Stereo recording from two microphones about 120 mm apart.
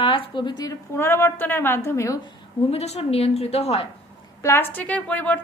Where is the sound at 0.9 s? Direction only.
20° left (ahead or behind).